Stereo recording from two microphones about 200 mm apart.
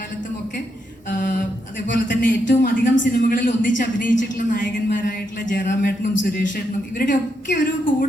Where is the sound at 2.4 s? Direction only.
60° left (ahead or behind).